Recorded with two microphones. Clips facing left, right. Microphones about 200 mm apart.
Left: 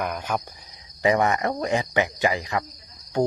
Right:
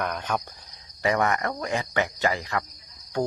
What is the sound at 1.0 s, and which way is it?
Speech, 20° left (ahead or behind).